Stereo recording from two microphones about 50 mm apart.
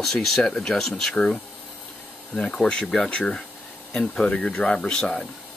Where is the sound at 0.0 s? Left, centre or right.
Centre.